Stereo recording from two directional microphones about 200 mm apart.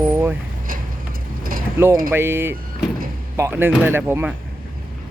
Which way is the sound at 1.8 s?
10° right (ahead or behind).